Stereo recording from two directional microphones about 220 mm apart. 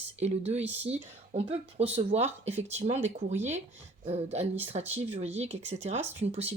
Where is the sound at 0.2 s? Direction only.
30° right (ahead or behind).